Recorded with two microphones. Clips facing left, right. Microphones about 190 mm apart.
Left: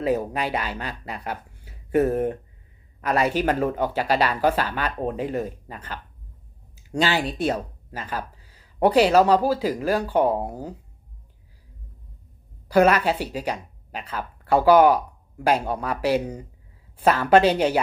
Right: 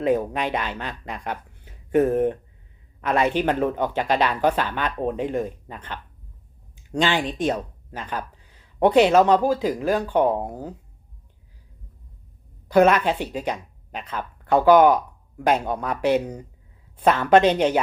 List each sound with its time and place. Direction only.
0.0 s speech: 5° left (ahead or behind)
12.8 s speech: 5° left (ahead or behind)